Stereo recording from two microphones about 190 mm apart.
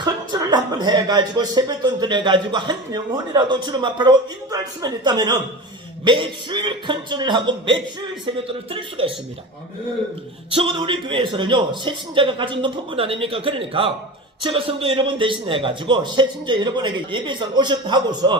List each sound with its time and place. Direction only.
0.0 s speech: 20° right (ahead or behind)
10.5 s speech: 25° right (ahead or behind)